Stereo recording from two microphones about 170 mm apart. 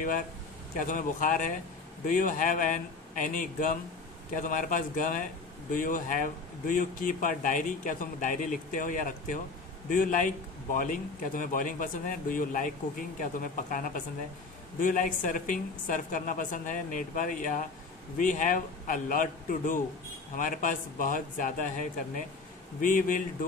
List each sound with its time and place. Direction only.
0.7 s a man's voice: 50° left (ahead or behind)